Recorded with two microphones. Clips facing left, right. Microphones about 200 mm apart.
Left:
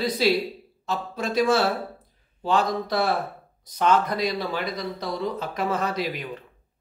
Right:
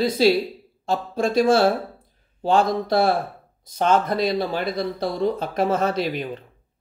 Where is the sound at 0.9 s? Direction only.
50° right (ahead or behind).